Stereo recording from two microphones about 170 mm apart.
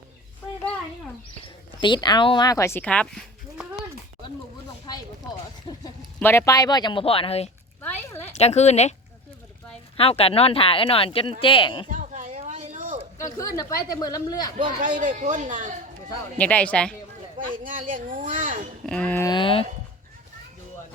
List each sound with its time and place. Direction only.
1.8 s speech: 25° left (ahead or behind); by 3.2 s 5° left (ahead or behind)
5.7 s a sound: 30° left (ahead or behind)
6.1 s speech: 15° left (ahead or behind); by 7.5 s 35° left (ahead or behind)
7.8 s a sound: 10° left (ahead or behind)
8.4 s speech: 40° left (ahead or behind)
10.0 s speech: 35° left (ahead or behind)
11.9 s a sound: 50° right (ahead or behind)
13.3 s speech: 20° left (ahead or behind)
14.9 s speech: 45° right (ahead or behind)
16.4 s speech: 10° left (ahead or behind)
17.5 s speech: 55° right (ahead or behind)
18.9 s speech: 5° left (ahead or behind)
19.2 s speech: 25° left (ahead or behind)